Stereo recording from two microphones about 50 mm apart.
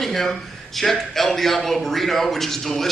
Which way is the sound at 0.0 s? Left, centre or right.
Centre.